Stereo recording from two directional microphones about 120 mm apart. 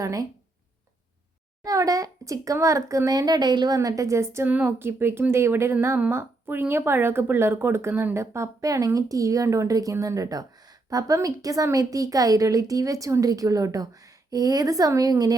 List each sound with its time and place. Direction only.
0.0 s speech: 30° right (ahead or behind)
1.6 s speech: 30° right (ahead or behind)